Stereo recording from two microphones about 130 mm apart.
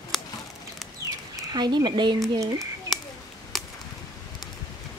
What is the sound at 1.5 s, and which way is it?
Speech, 35° right (ahead or behind).